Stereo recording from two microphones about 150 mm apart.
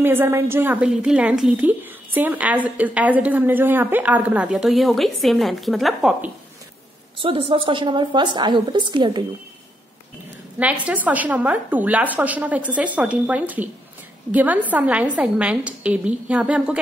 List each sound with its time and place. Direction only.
0.0 s a woman's voice: 15° right (ahead or behind)
7.2 s a woman's voice: 35° right (ahead or behind)
10.6 s a woman's voice: 10° right (ahead or behind)